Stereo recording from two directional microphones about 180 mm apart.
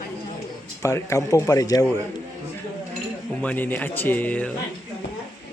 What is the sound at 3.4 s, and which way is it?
Speech, 10° left (ahead or behind).